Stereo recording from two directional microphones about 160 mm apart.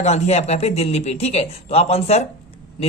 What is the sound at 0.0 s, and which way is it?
Speech, 45° left (ahead or behind).